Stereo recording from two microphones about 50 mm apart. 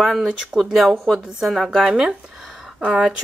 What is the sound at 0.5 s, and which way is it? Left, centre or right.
A woman's voice, centre.